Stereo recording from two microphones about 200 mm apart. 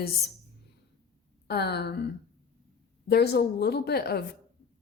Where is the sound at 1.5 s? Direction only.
55° left (ahead or behind).